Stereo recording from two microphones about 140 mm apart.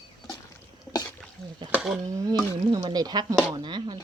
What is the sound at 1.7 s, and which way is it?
Speech, 5° right (ahead or behind).